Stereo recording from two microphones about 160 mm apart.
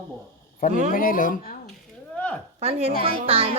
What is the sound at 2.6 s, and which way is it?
Speech, 40° right (ahead or behind).